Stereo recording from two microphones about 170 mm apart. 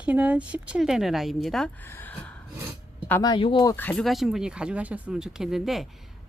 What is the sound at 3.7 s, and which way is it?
Speech, 10° left (ahead or behind).